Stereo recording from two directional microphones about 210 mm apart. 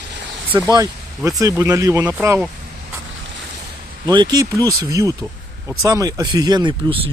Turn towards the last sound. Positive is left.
turn(degrees=-25)  # may be behind; listen again after turning